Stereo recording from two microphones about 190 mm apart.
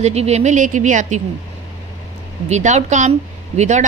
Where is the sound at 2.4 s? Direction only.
35° right (ahead or behind).